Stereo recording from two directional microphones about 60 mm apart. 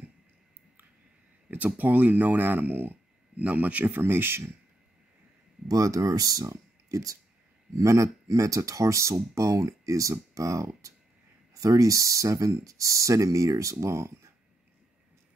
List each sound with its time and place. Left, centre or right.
1.8 s speech: right
4.0 s speech: right
5.7 s speech: right
7.7 s speech: right
11.6 s speech: right